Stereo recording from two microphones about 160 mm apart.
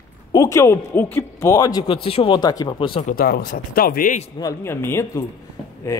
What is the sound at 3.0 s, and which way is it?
Speech, 70° left (ahead or behind).